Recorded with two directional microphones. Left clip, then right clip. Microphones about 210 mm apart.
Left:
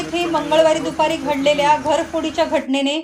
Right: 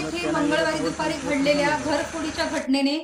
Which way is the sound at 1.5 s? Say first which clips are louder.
Left 8 dB; 35° right (ahead or behind).